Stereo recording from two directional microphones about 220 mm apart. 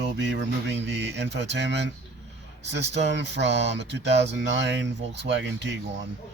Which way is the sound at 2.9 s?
50° right (ahead or behind).